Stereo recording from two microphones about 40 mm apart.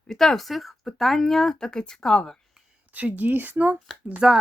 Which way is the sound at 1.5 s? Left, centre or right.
Left.